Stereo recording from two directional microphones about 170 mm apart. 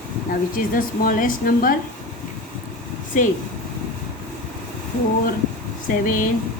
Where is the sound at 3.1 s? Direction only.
50° left (ahead or behind).